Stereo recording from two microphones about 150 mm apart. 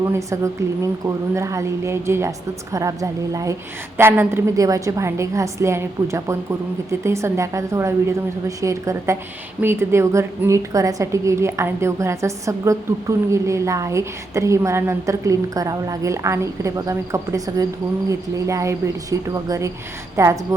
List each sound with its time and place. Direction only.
0.1 s a woman's voice: 20° right (ahead or behind)